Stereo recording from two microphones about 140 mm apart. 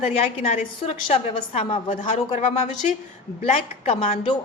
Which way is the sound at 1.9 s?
60° left (ahead or behind).